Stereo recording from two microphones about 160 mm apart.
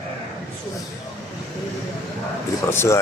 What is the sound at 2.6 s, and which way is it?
Speech, 15° left (ahead or behind).